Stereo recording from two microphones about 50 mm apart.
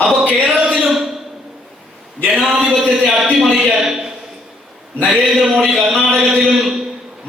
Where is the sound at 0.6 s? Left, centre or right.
Centre.